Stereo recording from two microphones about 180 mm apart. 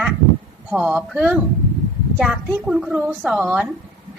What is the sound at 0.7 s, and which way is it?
A woman's voice, 5° right (ahead or behind).